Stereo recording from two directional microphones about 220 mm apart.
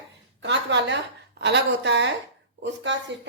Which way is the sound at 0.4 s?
55° right (ahead or behind).